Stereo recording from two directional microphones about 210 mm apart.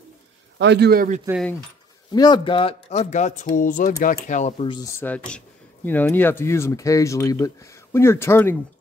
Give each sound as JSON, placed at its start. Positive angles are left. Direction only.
{"t": 0.6, "sound": "a man's voice", "side_deg": -55}
{"t": 2.1, "sound": "speech", "side_deg": 20}